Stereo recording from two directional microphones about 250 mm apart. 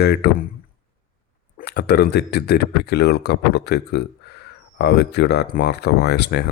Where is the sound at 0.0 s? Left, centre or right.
Left.